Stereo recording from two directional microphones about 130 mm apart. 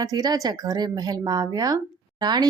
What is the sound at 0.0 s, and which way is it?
Speech, 30° right (ahead or behind).